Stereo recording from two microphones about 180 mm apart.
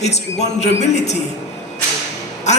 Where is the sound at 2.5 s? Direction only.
40° left (ahead or behind).